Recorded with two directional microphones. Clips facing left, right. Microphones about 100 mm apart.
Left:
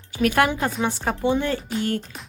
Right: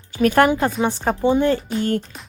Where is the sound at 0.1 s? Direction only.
40° right (ahead or behind).